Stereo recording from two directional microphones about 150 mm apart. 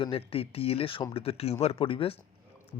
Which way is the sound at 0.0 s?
40° left (ahead or behind).